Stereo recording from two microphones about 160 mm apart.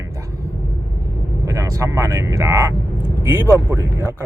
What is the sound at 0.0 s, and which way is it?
Vehicle, 20° right (ahead or behind).